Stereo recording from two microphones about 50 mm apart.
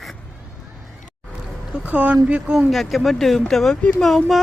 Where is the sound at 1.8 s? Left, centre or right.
Right.